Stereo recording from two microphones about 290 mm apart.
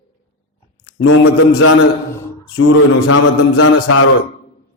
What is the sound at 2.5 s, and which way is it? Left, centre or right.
Speech, left.